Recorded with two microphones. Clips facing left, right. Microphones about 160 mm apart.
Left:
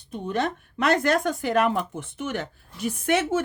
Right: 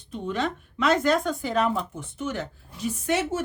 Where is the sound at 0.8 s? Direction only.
65° left (ahead or behind).